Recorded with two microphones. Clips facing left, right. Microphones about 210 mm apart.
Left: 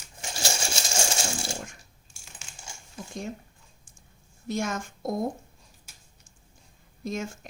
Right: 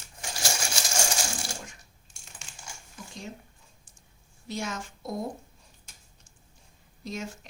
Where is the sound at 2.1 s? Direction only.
5° left (ahead or behind).